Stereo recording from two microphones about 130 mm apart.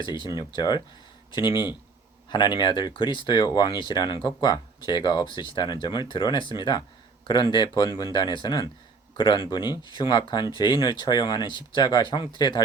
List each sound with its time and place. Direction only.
0.3 s speech: 30° left (ahead or behind)